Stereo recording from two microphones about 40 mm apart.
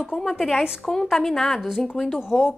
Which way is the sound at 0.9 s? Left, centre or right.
Centre.